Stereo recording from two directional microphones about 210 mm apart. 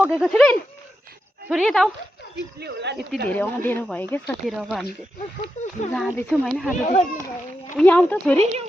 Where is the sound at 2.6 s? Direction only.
55° right (ahead or behind).